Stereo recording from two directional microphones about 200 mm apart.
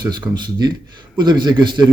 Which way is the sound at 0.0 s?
20° right (ahead or behind).